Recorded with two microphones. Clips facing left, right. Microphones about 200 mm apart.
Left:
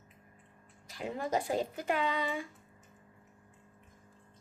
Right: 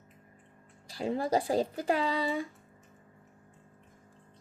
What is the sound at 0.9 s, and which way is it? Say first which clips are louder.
Speech: right 5 dB; 35° right (ahead or behind).